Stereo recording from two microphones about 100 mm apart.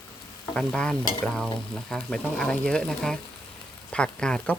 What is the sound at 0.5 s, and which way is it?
Speech, 10° left (ahead or behind).